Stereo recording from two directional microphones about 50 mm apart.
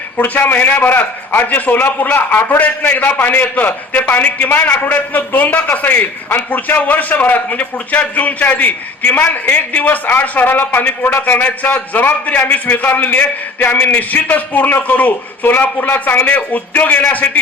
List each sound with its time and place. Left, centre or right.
0.2 s a man's voice: left